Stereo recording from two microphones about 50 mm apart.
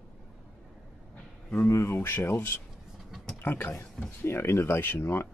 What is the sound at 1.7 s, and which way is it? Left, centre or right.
Speech, left.